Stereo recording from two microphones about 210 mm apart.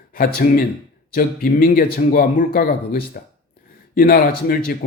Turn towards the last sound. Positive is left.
turn(degrees=45)  # may be behind; listen again after turning